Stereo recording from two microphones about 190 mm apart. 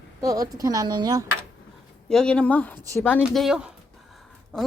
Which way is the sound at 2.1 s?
5° left (ahead or behind).